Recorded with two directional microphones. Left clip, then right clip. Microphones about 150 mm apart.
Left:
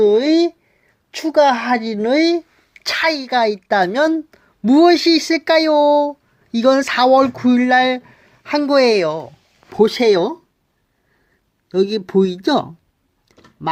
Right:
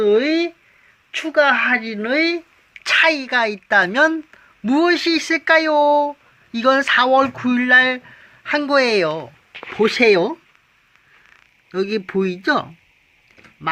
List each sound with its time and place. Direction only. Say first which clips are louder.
0.0 s speech: left 3 dB; 55° left (ahead or behind); by 10.3 s 35° left (ahead or behind)
11.7 s speech: left 5 dB; 45° left (ahead or behind)